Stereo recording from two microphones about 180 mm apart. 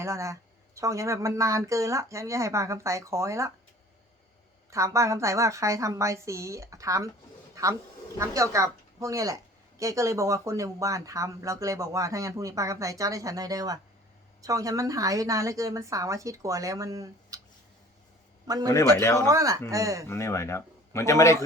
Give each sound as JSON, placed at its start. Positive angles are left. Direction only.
{"t": 0.0, "sound": "a woman's voice", "side_deg": -15}
{"t": 4.7, "sound": "a woman's voice", "side_deg": -15}
{"t": 7.5, "sound": "a sound", "side_deg": -20}
{"t": 8.2, "sound": "a woman's voice", "side_deg": -15}
{"t": 18.4, "sound": "a man's voice", "side_deg": -20}
{"t": 18.9, "sound": "a man's voice", "side_deg": 15}
{"t": 19.3, "sound": "a woman's voice", "side_deg": -20}
{"t": 20.1, "sound": "a man's voice", "side_deg": 15}